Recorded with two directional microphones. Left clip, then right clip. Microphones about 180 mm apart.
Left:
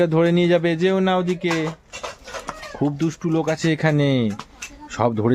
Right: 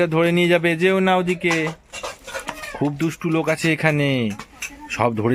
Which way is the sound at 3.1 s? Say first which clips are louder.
Right 1 dB; 10° left (ahead or behind).